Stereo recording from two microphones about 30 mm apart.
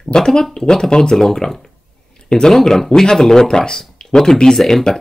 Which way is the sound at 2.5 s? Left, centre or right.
Centre.